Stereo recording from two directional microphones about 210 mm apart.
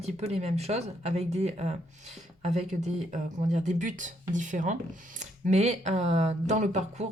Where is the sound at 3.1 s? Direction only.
35° right (ahead or behind).